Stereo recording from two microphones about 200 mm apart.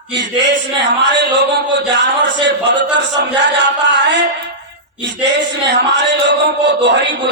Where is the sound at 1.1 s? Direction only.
60° right (ahead or behind).